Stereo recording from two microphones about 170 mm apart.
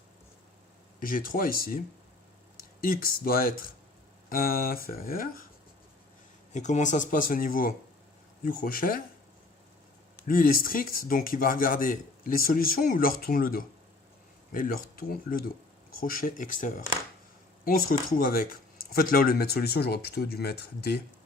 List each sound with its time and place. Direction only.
0.9 s speech: 55° left (ahead or behind)
2.8 s speech: 55° left (ahead or behind)
6.5 s speech: 45° left (ahead or behind)
10.2 s speech: 55° left (ahead or behind)